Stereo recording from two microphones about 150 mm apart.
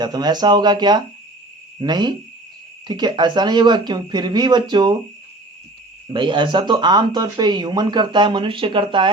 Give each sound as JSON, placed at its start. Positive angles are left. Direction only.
{"t": 0.0, "sound": "speech", "side_deg": -25}
{"t": 6.1, "sound": "speech", "side_deg": -30}